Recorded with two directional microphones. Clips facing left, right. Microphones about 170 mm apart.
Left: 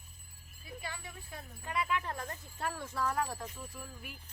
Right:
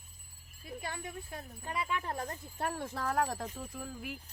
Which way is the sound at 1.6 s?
30° right (ahead or behind).